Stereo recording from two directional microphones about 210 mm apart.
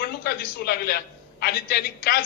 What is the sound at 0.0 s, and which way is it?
A woman's voice, 45° left (ahead or behind).